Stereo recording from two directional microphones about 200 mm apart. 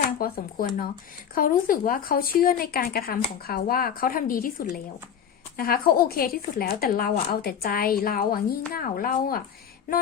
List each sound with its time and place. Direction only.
0.2 s speech: 45° left (ahead or behind)
5.5 s speech: 50° left (ahead or behind)